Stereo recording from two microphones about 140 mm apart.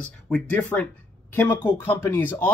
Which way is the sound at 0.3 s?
10° left (ahead or behind).